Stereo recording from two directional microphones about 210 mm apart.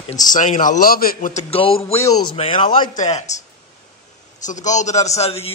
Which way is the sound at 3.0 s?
30° left (ahead or behind).